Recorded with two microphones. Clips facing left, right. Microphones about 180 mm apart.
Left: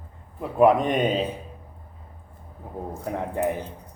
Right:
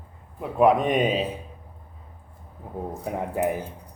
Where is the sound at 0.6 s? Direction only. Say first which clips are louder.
Left 1 dB; centre (ahead or behind).